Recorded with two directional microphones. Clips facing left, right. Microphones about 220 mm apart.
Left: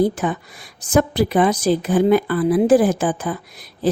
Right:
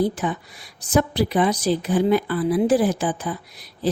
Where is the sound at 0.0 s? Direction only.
50° left (ahead or behind).